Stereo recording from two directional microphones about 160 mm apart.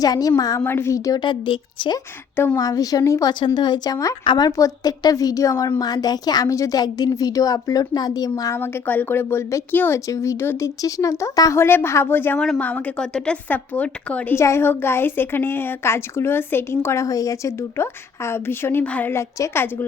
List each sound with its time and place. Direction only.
0.0 s a woman's voice: 25° left (ahead or behind)
2.3 s a woman's voice: 15° left (ahead or behind)